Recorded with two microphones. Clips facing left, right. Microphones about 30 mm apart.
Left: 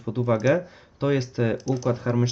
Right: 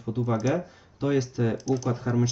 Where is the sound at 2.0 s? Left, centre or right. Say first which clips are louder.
Left 2 dB; left.